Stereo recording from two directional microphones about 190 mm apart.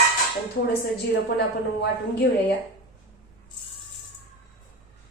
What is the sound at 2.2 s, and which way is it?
Speech, 75° left (ahead or behind).